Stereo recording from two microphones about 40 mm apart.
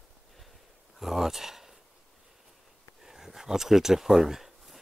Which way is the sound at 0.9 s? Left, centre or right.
Centre.